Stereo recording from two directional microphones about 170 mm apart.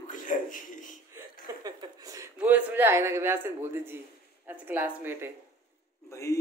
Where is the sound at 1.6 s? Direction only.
20° right (ahead or behind).